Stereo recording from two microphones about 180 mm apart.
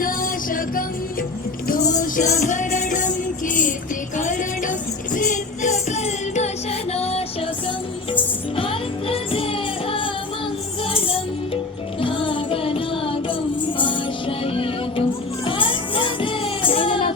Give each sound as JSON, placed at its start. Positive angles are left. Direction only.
{"t": 0.0, "sound": "music", "side_deg": 50}
{"t": 8.5, "sound": "music", "side_deg": 30}
{"t": 11.9, "sound": "music", "side_deg": 30}